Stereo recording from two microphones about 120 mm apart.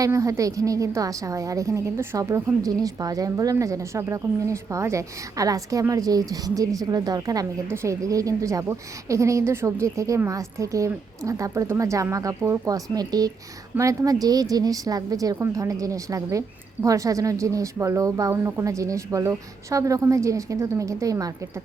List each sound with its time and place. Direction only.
0.0 s a woman's voice: 25° right (ahead or behind)